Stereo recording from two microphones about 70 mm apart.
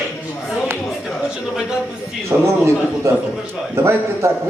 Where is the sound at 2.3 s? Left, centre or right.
Right.